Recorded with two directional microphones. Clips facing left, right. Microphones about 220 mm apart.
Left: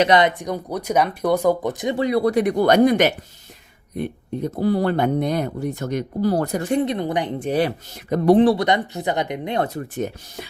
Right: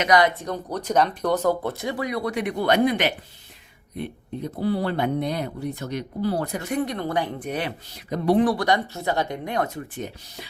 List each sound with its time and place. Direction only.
0.0 s speech: 25° left (ahead or behind); by 6.6 s 45° left (ahead or behind)
6.6 s speech: 30° left (ahead or behind); by 8.4 s 45° left (ahead or behind)
8.4 s speech: 25° left (ahead or behind)
9.6 s speech: 40° left (ahead or behind)